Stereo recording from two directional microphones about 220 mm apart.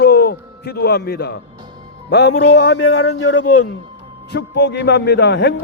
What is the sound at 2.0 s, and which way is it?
A man's voice, 50° left (ahead or behind).